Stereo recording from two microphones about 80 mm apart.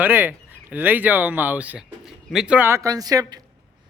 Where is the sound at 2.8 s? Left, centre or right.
Right.